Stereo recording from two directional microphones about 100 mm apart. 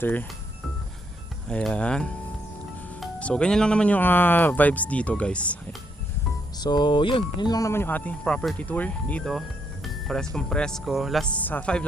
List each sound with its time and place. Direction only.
0.0 s speech: 20° left (ahead or behind)
1.5 s speech: 10° left (ahead or behind)
3.2 s speech: 10° left (ahead or behind)
6.6 s speech: 45° left (ahead or behind)
7.7 s speech: 20° left (ahead or behind); by 11.3 s centre (ahead or behind)
11.3 s speech: 15° left (ahead or behind)